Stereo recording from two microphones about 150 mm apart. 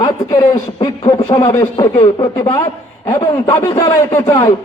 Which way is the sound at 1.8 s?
35° left (ahead or behind).